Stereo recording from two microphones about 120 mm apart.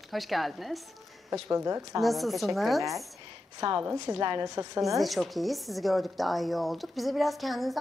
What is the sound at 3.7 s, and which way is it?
Speech, 15° right (ahead or behind).